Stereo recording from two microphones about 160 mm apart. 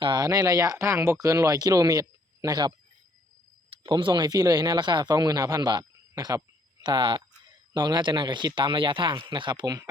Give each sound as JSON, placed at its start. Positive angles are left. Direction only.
{"t": 0.0, "sound": "speech", "side_deg": -25}